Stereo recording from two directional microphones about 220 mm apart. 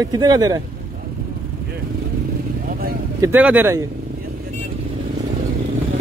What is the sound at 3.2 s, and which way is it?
Speech, 10° right (ahead or behind).